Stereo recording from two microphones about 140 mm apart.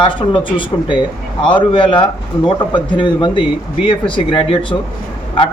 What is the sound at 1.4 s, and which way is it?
Speech, 35° left (ahead or behind).